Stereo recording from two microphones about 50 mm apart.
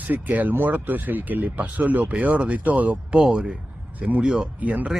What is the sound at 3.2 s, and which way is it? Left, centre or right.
Speech, centre.